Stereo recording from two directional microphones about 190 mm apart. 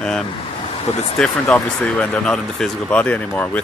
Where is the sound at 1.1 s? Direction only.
5° left (ahead or behind).